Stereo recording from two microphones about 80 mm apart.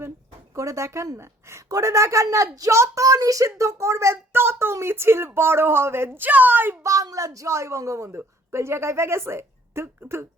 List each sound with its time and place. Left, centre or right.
0.5 s a woman's voice: right
6.8 s speech: right